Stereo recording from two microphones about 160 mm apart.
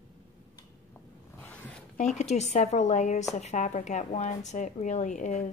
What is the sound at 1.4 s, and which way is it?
Zipper, 10° left (ahead or behind).